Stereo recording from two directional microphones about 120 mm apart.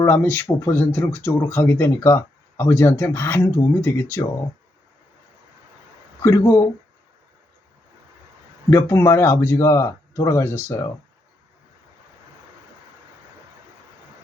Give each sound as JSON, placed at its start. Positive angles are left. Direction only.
{"t": 0.0, "sound": "speech", "side_deg": 20}
{"t": 6.2, "sound": "speech", "side_deg": 20}
{"t": 8.7, "sound": "speech", "side_deg": 25}